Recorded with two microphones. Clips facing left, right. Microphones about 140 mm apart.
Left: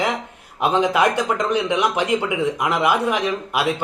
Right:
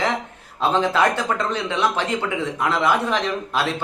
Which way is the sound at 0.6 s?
15° left (ahead or behind).